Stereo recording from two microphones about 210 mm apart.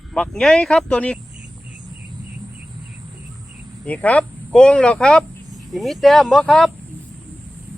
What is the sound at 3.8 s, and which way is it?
Speech, 5° left (ahead or behind).